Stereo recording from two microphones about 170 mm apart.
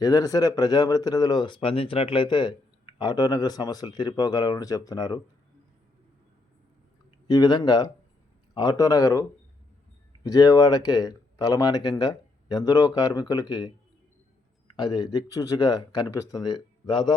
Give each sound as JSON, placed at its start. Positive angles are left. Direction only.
{"t": 0.0, "sound": "speech", "side_deg": 20}
{"t": 7.3, "sound": "speech", "side_deg": 20}
{"t": 10.2, "sound": "speech", "side_deg": 20}
{"t": 14.8, "sound": "speech", "side_deg": 25}